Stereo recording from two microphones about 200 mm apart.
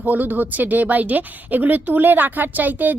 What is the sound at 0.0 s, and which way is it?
Speech, 10° right (ahead or behind).